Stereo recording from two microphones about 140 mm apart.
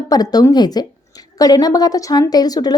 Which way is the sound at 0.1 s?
25° left (ahead or behind).